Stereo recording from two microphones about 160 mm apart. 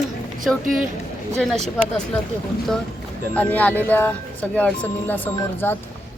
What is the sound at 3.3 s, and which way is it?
Speech, 10° left (ahead or behind).